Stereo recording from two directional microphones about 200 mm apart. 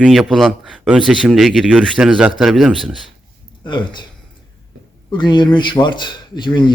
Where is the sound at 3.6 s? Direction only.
20° left (ahead or behind).